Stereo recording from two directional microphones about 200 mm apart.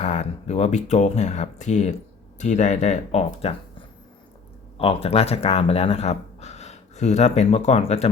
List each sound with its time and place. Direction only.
0.0 s speech: 35° left (ahead or behind)